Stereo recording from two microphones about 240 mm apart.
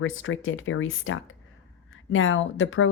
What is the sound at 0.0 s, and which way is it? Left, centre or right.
Speech, left.